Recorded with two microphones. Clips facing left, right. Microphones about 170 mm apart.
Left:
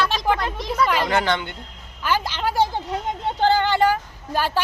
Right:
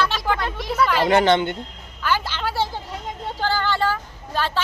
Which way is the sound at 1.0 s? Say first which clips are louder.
Right 5 dB; 20° right (ahead or behind).